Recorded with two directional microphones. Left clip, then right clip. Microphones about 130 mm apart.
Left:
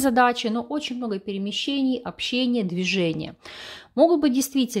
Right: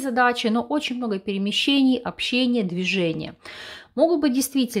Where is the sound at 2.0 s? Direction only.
Centre (ahead or behind).